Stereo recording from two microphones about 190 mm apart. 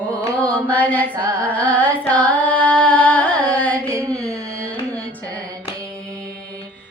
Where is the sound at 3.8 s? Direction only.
15° right (ahead or behind).